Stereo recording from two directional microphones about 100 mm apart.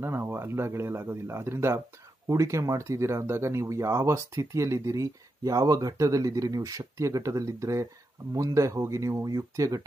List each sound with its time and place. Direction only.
0.0 s speech: 25° right (ahead or behind)